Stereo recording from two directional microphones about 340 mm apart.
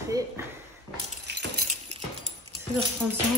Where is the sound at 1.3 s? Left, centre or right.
Right.